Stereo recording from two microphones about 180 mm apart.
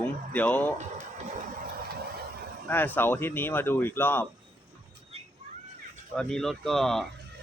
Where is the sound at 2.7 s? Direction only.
10° left (ahead or behind).